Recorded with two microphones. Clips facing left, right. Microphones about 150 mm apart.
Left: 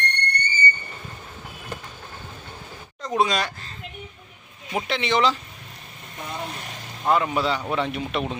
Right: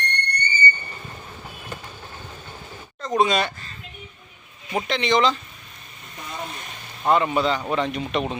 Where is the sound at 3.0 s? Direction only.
5° left (ahead or behind).